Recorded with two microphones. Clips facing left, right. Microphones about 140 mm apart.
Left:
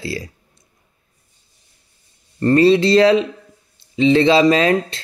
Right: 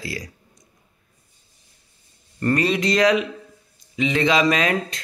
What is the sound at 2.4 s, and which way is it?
Speech, 30° left (ahead or behind).